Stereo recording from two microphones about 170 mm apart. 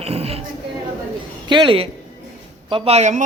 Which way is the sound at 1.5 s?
30° right (ahead or behind).